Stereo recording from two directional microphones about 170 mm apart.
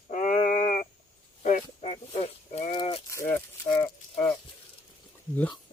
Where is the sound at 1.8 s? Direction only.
35° left (ahead or behind).